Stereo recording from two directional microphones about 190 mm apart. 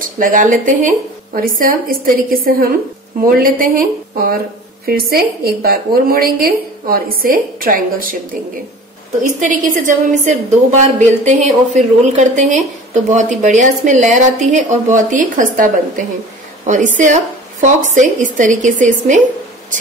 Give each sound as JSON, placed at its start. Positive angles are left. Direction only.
{"t": 0.0, "sound": "speech", "side_deg": -45}
{"t": 9.4, "sound": "a woman's voice", "side_deg": -45}